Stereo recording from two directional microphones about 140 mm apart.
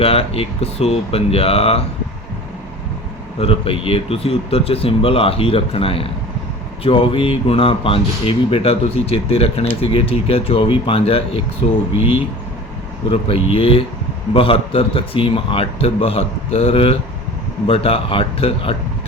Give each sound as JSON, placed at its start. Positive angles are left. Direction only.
{"t": 0.0, "sound": "speech", "side_deg": 45}
{"t": 3.3, "sound": "speech", "side_deg": 45}